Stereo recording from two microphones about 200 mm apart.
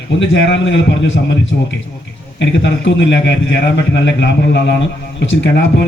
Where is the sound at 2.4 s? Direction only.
65° left (ahead or behind).